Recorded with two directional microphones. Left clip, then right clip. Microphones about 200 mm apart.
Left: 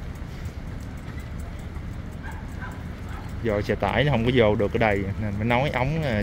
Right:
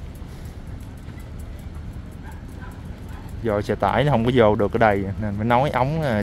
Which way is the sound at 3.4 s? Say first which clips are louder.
Right 3 dB; 15° right (ahead or behind).